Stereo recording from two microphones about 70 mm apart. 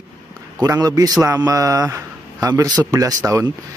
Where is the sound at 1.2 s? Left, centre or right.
Right.